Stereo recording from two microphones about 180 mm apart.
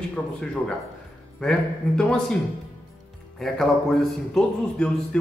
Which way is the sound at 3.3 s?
Centre (ahead or behind).